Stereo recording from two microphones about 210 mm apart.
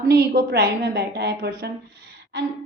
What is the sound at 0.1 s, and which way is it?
A woman's voice, 50° right (ahead or behind).